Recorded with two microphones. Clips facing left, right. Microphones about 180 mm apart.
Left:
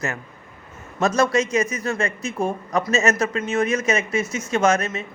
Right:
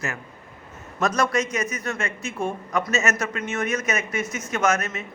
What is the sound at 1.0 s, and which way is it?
A man's voice, 25° left (ahead or behind).